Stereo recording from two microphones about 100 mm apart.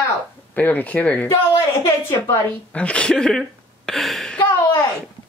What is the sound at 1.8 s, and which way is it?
Speech, 25° left (ahead or behind).